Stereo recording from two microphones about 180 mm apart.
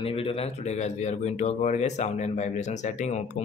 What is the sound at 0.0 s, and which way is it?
Speech, 30° left (ahead or behind).